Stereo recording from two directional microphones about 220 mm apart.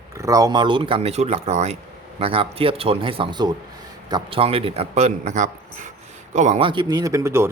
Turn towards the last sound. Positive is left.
turn(degrees=-10)  # may be behind; listen again after turning